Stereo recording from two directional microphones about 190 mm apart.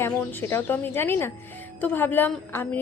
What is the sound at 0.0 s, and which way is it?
A woman's voice, 10° left (ahead or behind).